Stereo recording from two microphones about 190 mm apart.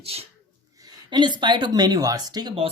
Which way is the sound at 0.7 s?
20° right (ahead or behind).